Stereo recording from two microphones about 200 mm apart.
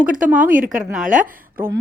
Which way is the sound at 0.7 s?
Centre (ahead or behind).